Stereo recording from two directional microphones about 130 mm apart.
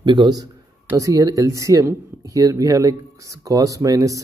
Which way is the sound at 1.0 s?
25° right (ahead or behind).